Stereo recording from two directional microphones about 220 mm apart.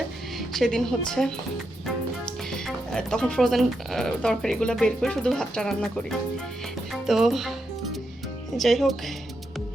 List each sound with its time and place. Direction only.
0.3 s a woman's voice: centre (ahead or behind)
8.5 s speech: centre (ahead or behind)